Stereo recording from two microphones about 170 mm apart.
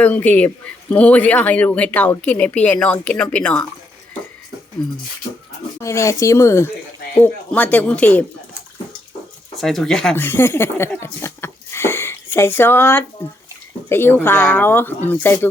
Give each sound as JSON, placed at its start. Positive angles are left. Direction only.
{"t": 0.0, "sound": "speech", "side_deg": 10}
{"t": 5.8, "sound": "speech", "side_deg": 15}
{"t": 9.6, "sound": "speech", "side_deg": 0}